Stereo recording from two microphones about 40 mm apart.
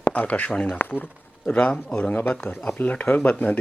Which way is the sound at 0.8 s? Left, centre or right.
Left.